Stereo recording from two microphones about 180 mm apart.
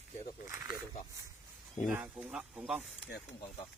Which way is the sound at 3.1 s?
60° left (ahead or behind).